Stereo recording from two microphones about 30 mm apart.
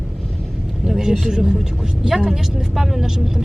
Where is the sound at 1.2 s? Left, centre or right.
Centre.